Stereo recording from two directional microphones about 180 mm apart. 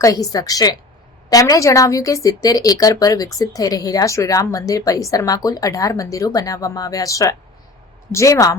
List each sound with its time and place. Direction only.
0.0 s a woman's voice: 20° left (ahead or behind)